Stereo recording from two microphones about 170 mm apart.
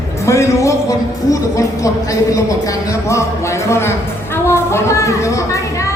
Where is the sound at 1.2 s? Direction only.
20° left (ahead or behind).